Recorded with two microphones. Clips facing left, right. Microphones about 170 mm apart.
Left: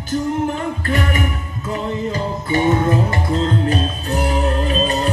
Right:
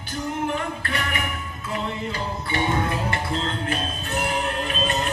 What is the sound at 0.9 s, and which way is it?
Music, 40° left (ahead or behind).